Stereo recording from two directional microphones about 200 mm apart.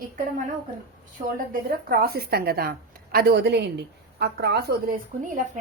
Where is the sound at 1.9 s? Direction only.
50° right (ahead or behind).